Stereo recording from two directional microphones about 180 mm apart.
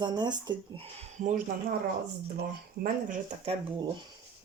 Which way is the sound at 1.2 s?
45° right (ahead or behind).